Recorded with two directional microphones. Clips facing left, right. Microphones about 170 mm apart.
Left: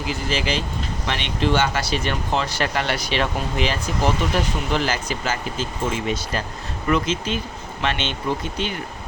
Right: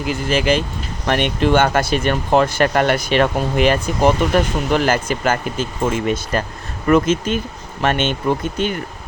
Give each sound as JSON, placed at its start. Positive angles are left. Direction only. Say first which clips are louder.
{"t": 0.0, "sound": "speech", "louder": "right 6 dB", "side_deg": -55}